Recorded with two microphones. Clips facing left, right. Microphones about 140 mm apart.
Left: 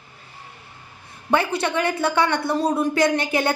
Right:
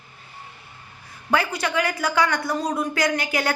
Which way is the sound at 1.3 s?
25° left (ahead or behind).